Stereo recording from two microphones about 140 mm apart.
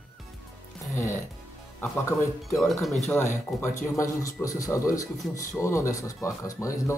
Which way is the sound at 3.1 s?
20° left (ahead or behind).